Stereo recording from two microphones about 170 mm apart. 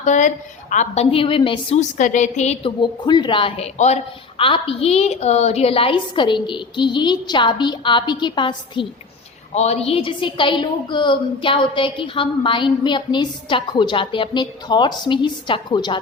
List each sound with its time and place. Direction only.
0.0 s a woman's voice: 45° left (ahead or behind)
1.8 s a woman's voice: 45° left (ahead or behind)
2.8 s a woman's voice: 25° left (ahead or behind)